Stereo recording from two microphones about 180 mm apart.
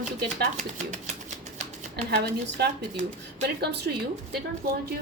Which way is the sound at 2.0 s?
60° right (ahead or behind).